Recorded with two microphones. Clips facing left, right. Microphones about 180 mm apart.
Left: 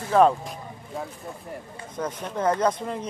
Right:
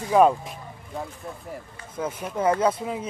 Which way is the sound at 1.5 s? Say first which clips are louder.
Left 1 dB; 5° right (ahead or behind).